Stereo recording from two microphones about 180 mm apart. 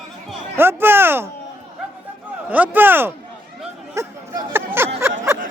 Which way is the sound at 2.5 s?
10° right (ahead or behind).